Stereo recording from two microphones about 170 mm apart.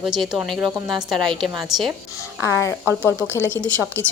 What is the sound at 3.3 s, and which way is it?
Speech, 15° left (ahead or behind).